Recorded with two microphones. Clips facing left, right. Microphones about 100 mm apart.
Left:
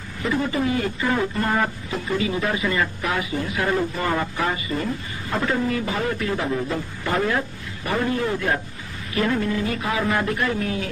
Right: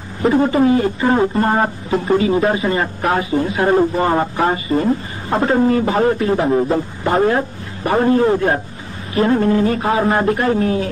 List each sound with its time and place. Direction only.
0.2 s speech: 40° right (ahead or behind)